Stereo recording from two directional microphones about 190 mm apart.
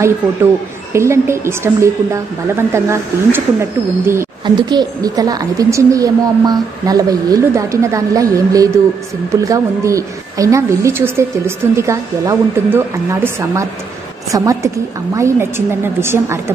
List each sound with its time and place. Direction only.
0.9 s a woman's voice: 15° right (ahead or behind)